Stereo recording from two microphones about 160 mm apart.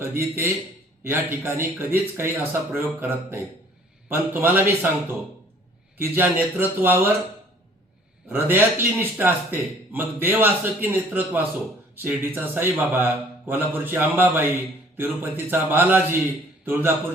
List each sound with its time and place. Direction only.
0.0 s a man's voice: 15° right (ahead or behind)
8.3 s a man's voice: 10° right (ahead or behind)